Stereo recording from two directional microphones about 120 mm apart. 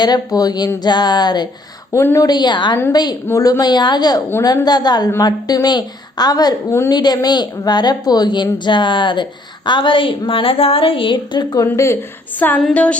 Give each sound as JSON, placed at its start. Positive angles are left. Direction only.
{"t": 0.0, "sound": "a woman's voice", "side_deg": 35}
{"t": 1.9, "sound": "a woman's voice", "side_deg": 25}
{"t": 2.3, "sound": "a woman's voice", "side_deg": 35}
{"t": 3.2, "sound": "a woman's voice", "side_deg": 25}
{"t": 6.9, "sound": "a woman's voice", "side_deg": 35}